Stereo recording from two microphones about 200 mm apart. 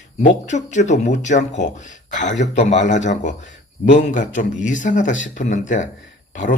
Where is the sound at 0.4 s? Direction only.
35° left (ahead or behind).